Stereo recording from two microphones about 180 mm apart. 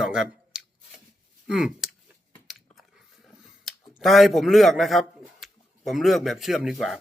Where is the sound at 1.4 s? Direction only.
5° right (ahead or behind).